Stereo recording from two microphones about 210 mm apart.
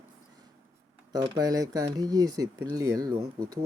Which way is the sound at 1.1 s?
20° right (ahead or behind).